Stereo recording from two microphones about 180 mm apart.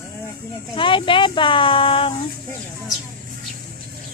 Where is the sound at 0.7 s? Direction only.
25° left (ahead or behind).